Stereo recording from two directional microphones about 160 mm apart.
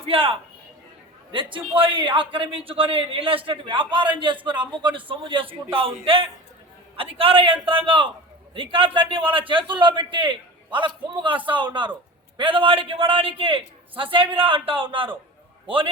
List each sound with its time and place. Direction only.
0.0 s a man's voice: 35° right (ahead or behind)